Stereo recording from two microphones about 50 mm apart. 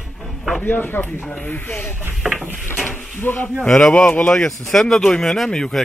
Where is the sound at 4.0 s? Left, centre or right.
Left.